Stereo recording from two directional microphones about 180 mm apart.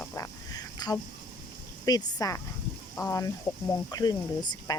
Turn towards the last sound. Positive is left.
turn(degrees=20)  # may be behind; listen again after turning